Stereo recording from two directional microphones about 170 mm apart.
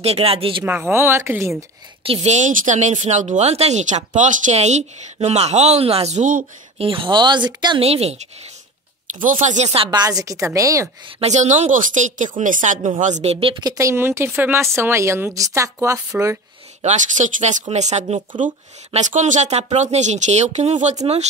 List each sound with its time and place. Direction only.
0.0 s speech: 35° right (ahead or behind)
0.7 s speech: 10° right (ahead or behind)
2.0 s speech: 40° right (ahead or behind)
6.8 s speech: 30° right (ahead or behind)
9.2 s speech: 50° right (ahead or behind)
9.8 s speech: 25° right (ahead or behind)
11.1 s speech: 40° right (ahead or behind); by 16.0 s 15° right (ahead or behind)
16.8 s speech: 45° right (ahead or behind)